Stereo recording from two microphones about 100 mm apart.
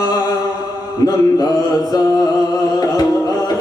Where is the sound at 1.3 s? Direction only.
40° left (ahead or behind).